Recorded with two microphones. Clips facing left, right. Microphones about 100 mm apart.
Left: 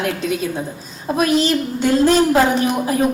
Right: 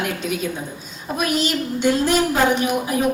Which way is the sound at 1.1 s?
35° left (ahead or behind).